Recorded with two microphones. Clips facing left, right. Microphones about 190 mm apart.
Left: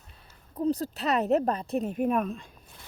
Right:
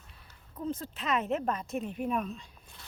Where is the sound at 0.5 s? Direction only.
40° left (ahead or behind); by 2.5 s 55° left (ahead or behind).